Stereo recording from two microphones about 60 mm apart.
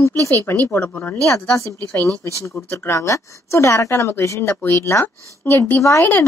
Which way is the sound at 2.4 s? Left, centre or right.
Left.